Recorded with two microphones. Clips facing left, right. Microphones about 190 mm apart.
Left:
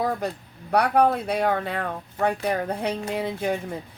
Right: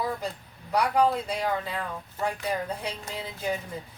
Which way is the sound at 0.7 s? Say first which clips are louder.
Left 4 dB; 60° left (ahead or behind).